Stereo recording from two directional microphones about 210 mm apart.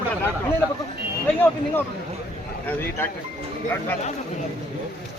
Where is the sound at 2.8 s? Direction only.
10° left (ahead or behind).